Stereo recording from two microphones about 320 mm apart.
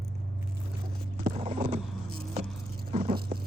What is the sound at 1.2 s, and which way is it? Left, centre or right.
Clip-clop, centre.